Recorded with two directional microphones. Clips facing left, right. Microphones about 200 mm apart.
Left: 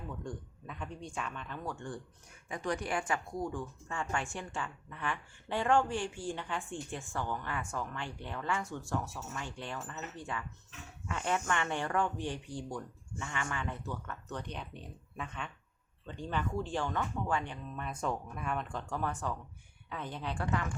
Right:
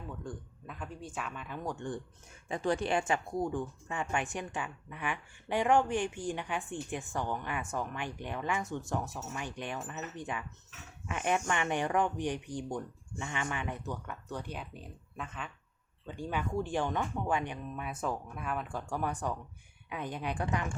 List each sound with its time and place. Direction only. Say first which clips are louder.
0.3 s speech: even; centre (ahead or behind)